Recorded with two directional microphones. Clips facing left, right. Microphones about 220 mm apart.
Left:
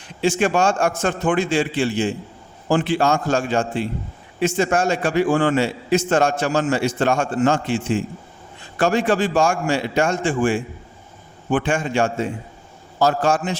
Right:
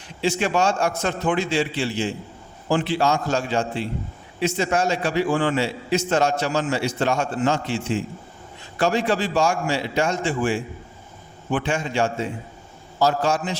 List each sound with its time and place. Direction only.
0.2 s a man's voice: 50° left (ahead or behind)